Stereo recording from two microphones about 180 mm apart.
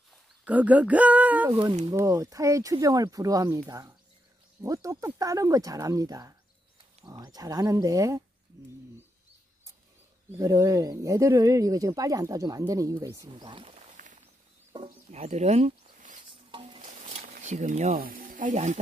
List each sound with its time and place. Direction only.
0.5 s speech: 10° right (ahead or behind)
1.5 s speech: 25° right (ahead or behind)
10.3 s speech: 15° right (ahead or behind)
13.3 s speech: 25° right (ahead or behind)
14.7 s chicken: 30° right (ahead or behind)
16.5 s stir: 25° right (ahead or behind)
16.8 s a sound: 40° right (ahead or behind)
17.9 s speech: 55° right (ahead or behind)